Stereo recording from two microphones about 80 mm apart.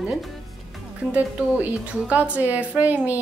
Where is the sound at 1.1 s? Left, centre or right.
Centre.